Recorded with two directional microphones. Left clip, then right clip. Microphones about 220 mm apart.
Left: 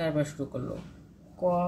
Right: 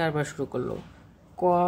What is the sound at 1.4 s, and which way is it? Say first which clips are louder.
Speech: right 5 dB; 45° right (ahead or behind).